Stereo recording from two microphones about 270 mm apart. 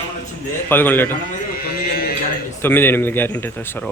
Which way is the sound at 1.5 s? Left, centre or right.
Left.